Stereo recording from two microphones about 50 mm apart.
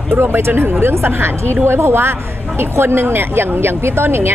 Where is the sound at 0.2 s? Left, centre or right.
Right.